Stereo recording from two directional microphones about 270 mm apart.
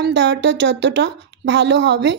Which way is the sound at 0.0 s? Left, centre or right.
Right.